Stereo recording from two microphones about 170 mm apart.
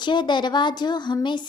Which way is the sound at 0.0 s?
25° left (ahead or behind).